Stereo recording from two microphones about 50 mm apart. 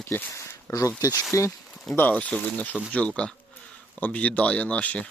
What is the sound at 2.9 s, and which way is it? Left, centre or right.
Speech, left.